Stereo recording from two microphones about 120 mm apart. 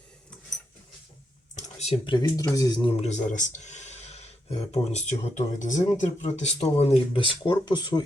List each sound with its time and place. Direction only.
1.5 s a sound: 70° left (ahead or behind)
2.0 s speech: 35° left (ahead or behind)
2.8 s speech: 55° left (ahead or behind)
5.2 s speech: 80° left
6.0 s speech: 70° left (ahead or behind); by 8.0 s 35° left (ahead or behind)